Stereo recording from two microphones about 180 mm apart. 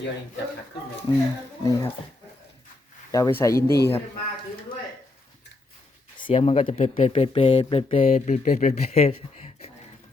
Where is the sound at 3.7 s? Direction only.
65° left (ahead or behind).